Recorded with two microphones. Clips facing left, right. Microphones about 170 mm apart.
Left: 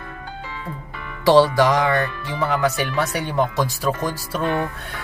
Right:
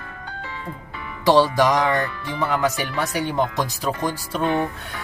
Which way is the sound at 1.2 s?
20° right (ahead or behind).